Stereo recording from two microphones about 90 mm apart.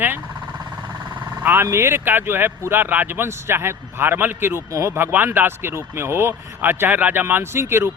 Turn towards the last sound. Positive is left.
turn(degrees=-30)  # may be behind; listen again after turning